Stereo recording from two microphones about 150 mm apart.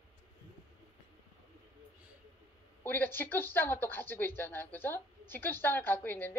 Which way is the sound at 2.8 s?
15° left (ahead or behind).